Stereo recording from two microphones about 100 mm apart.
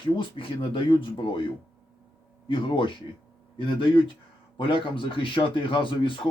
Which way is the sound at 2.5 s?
55° left (ahead or behind).